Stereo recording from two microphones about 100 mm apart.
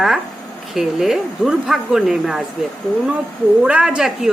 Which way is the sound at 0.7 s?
5° right (ahead or behind).